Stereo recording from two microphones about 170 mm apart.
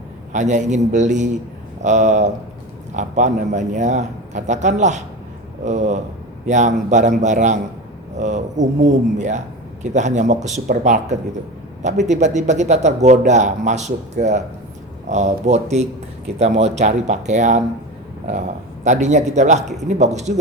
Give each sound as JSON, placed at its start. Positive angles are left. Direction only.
{"t": 0.3, "sound": "speech", "side_deg": -45}
{"t": 18.9, "sound": "speech", "side_deg": -45}